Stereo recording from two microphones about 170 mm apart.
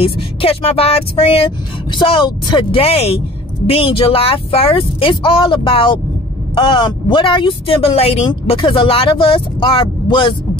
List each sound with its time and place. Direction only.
0.0 s speech: 35° left (ahead or behind)